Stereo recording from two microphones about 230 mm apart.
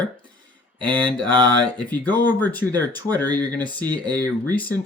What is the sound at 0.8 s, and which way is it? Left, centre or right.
Speech, right.